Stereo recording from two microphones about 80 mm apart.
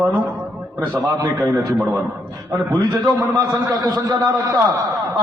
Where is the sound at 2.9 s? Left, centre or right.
Right.